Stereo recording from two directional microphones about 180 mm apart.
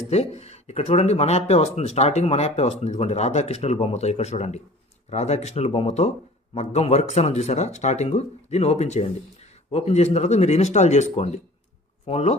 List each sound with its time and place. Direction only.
0.1 s speech: 35° left (ahead or behind)